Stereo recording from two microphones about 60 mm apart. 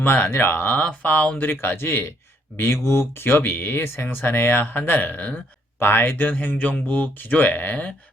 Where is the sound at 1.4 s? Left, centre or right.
Left.